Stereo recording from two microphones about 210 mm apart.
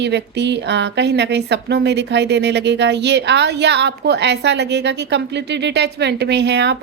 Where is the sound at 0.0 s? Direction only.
55° right (ahead or behind).